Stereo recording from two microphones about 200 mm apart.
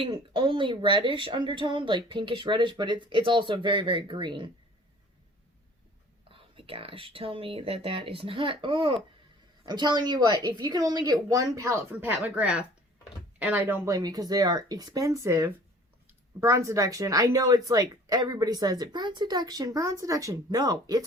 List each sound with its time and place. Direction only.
0.0 s speech: 25° right (ahead or behind)
6.3 s speech: 25° right (ahead or behind)